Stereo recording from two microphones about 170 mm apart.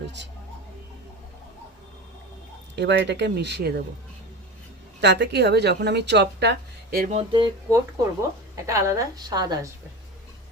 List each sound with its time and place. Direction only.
2.7 s a woman's voice: 90° right; by 3.8 s 70° right (ahead or behind)
4.9 s a woman's voice: 80° right
7.1 s a sound: 35° right (ahead or behind)
8.0 s a woman's voice: 20° right (ahead or behind)